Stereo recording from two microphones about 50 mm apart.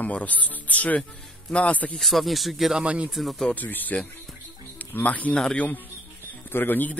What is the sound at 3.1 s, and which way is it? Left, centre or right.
Speech, centre.